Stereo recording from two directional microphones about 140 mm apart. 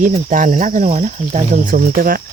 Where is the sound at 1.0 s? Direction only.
60° right (ahead or behind); by 2.2 s 90° right.